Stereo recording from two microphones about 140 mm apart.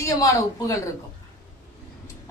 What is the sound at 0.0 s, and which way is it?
Speech, 25° left (ahead or behind).